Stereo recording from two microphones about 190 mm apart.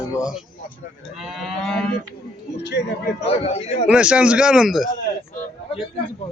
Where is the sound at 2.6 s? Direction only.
60° left (ahead or behind).